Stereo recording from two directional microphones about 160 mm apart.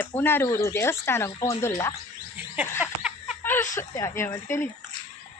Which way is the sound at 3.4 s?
15° left (ahead or behind).